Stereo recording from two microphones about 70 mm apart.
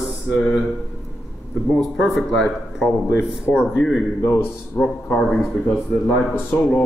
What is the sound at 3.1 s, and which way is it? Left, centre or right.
Speech, centre.